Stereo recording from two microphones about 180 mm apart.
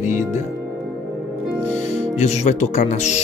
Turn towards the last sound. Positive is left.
turn(degrees=40)  # may be behind; listen again after turning